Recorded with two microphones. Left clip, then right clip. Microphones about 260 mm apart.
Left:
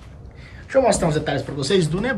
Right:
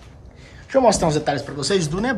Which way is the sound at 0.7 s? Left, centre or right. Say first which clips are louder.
Right 1 dB; right.